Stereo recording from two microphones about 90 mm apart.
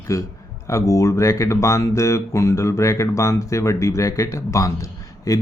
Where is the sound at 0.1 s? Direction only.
35° left (ahead or behind).